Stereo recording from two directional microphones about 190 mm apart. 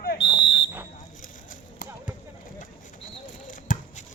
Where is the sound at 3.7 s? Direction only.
45° left (ahead or behind).